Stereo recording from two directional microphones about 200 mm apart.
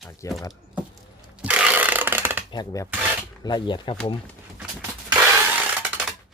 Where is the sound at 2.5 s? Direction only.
20° left (ahead or behind).